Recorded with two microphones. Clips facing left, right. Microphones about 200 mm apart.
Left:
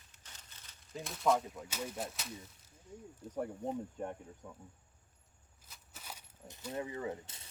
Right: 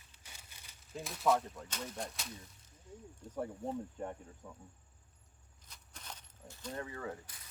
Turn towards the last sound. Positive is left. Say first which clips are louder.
# left 3 dB
turn(degrees=25)  # may be behind; listen again after turning